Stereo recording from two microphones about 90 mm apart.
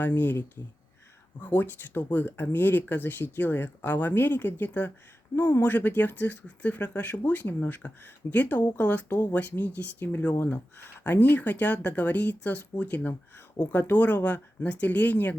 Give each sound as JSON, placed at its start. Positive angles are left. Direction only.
{"t": 0.0, "sound": "speech", "side_deg": 20}